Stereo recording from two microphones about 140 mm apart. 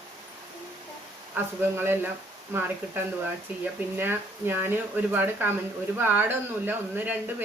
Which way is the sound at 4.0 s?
15° right (ahead or behind).